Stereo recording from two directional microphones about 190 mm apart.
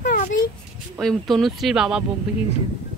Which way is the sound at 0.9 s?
Centre (ahead or behind).